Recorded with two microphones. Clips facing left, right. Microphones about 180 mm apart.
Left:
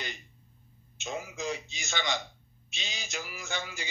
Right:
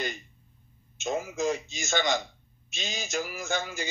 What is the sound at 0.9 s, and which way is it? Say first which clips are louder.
A man's voice: right 7 dB; 45° right (ahead or behind).